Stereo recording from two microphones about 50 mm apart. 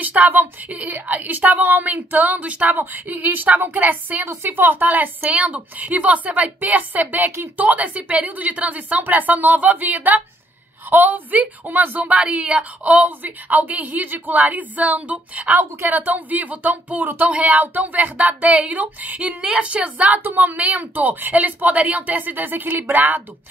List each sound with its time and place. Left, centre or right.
0.0 s speech: right
4.3 s speech: right